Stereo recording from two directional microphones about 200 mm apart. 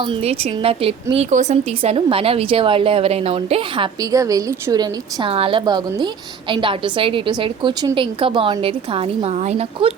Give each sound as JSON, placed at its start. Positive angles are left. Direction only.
{"t": 0.0, "sound": "a woman's voice", "side_deg": -25}
{"t": 4.0, "sound": "a woman's voice", "side_deg": -15}